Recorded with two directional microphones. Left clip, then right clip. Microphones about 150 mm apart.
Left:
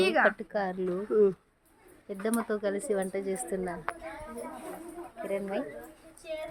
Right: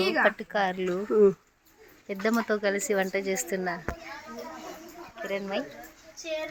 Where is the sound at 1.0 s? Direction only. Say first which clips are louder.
Right 4 dB; 50° right (ahead or behind).